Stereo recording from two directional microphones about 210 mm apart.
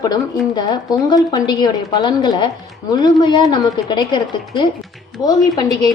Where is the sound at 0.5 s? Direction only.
20° left (ahead or behind).